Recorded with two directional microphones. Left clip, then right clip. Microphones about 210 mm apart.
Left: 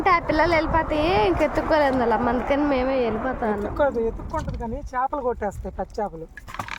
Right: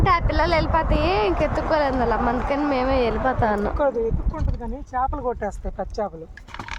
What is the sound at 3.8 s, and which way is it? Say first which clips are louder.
Speech: even; 35° left (ahead or behind).